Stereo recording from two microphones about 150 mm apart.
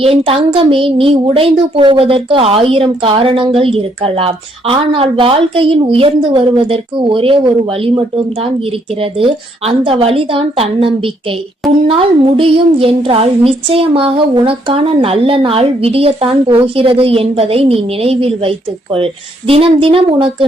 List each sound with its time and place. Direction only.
0.0 s a woman's voice: 40° right (ahead or behind)